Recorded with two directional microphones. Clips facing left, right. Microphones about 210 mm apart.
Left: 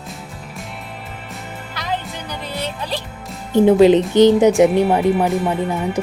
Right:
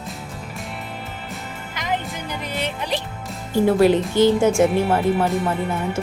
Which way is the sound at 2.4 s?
20° right (ahead or behind).